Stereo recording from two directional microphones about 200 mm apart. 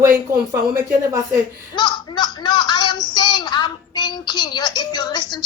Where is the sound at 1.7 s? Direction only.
20° left (ahead or behind).